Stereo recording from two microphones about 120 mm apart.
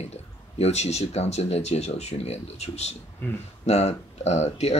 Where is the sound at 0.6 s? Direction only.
65° left (ahead or behind).